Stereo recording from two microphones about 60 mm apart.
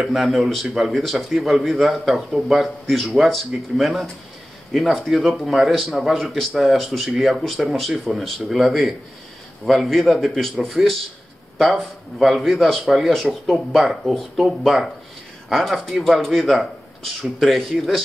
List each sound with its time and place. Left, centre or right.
0.0 s speech: centre